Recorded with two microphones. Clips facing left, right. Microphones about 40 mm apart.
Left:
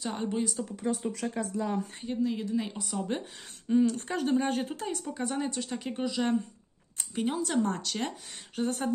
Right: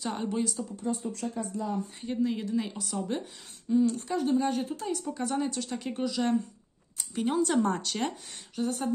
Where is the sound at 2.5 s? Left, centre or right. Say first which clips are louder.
Right 1 dB; centre.